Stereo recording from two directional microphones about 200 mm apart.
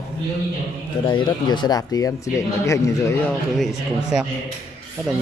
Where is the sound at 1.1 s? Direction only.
20° left (ahead or behind).